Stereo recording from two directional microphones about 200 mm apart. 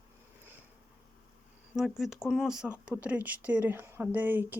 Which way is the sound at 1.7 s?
Centre (ahead or behind).